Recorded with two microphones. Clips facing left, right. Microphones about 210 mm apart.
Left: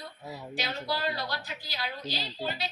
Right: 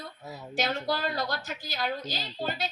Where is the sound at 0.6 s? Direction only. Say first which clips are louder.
Right 4 dB; 45° right (ahead or behind).